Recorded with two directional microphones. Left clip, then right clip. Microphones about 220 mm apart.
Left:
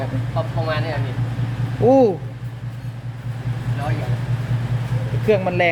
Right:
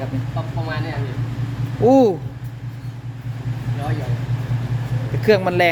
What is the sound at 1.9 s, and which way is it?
Speech, 15° right (ahead or behind).